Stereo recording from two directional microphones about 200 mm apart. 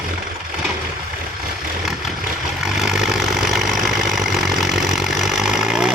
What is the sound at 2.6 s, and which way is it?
Vehicle, centre (ahead or behind).